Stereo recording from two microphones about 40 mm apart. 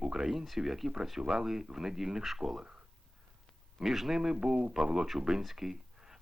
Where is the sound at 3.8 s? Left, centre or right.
Centre.